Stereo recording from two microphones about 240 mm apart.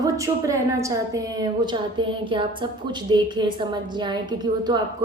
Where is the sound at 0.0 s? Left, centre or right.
Centre.